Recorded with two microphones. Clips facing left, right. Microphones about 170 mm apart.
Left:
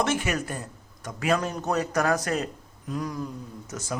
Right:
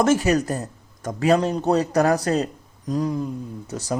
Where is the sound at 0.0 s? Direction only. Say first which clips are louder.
Right 8 dB; 40° right (ahead or behind).